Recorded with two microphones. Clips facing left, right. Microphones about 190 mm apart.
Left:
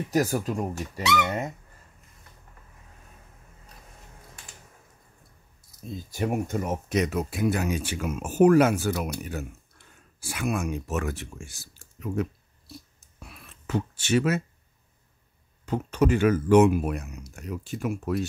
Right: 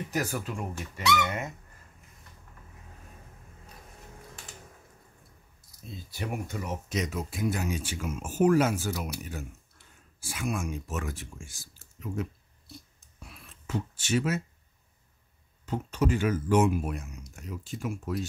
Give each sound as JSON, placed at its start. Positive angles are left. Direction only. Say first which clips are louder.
{"t": 0.1, "sound": "speech", "louder": "left 8 dB", "side_deg": 40}
{"t": 5.9, "sound": "speech", "louder": "left 7 dB", "side_deg": 45}
{"t": 13.2, "sound": "a sound", "louder": "left 2 dB", "side_deg": 65}
{"t": 15.6, "sound": "speech", "louder": "left 5 dB", "side_deg": 65}